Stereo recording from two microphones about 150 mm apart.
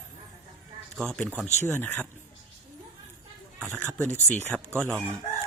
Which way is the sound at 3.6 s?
10° left (ahead or behind).